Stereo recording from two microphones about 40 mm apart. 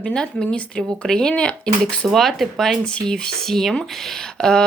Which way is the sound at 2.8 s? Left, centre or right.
Left.